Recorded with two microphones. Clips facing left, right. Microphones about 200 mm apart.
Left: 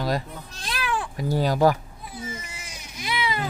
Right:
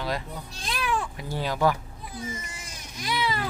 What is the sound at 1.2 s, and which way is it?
Speech, 40° left (ahead or behind).